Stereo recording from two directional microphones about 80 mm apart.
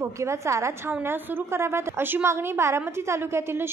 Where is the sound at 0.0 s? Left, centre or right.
Right.